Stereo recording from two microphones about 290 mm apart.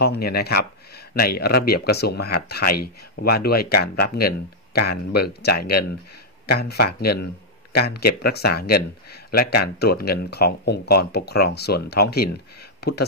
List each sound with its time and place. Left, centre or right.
0.0 s speech: left